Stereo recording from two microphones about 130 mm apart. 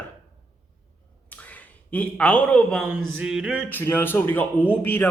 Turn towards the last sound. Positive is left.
turn(degrees=15)  # may be behind; listen again after turning